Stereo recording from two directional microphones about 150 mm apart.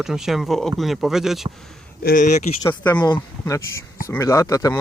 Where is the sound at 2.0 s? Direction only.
60° left (ahead or behind).